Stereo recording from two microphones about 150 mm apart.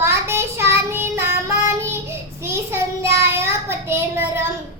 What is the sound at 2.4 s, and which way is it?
Child singing, 15° right (ahead or behind).